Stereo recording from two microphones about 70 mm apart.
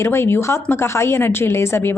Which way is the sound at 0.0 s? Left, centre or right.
Left.